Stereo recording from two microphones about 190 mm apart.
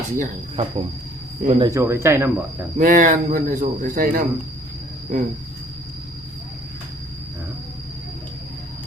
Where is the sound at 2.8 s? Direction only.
45° right (ahead or behind).